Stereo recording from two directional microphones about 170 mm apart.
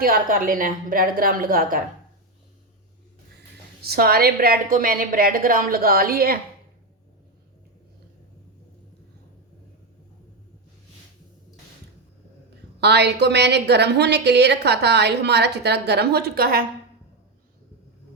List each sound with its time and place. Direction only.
0.0 s a woman's voice: 55° right (ahead or behind)
3.8 s a woman's voice: 65° right (ahead or behind)
12.8 s a woman's voice: 80° right; by 16.6 s 65° right (ahead or behind)